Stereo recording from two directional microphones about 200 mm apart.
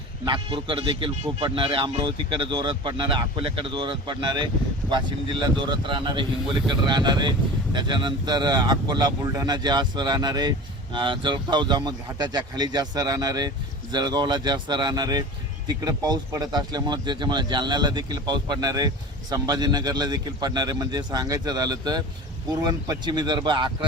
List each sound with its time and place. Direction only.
0.3 s speech: 25° right (ahead or behind)
5.6 s speech: 25° right (ahead or behind)